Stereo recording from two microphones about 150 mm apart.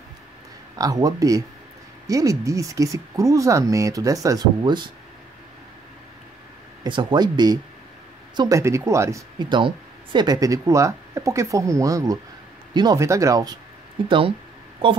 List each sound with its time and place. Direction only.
0.7 s speech: 25° right (ahead or behind)
6.8 s speech: 30° right (ahead or behind)
14.0 s speech: 35° right (ahead or behind)